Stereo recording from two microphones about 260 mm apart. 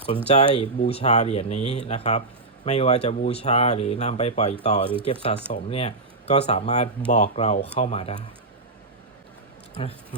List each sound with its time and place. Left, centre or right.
0.3 s speech: left